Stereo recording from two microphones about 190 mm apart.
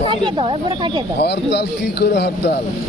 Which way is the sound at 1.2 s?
60° left (ahead or behind).